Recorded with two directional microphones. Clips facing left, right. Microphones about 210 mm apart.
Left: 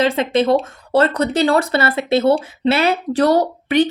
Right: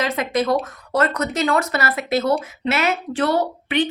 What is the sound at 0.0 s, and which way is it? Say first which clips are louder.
Speech: left 5 dB; 30° left (ahead or behind).